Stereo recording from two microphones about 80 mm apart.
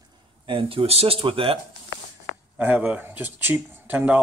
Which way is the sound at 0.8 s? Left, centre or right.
Right.